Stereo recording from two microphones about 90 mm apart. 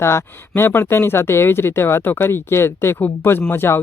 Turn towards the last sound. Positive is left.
turn(degrees=25)  # may be behind; listen again after turning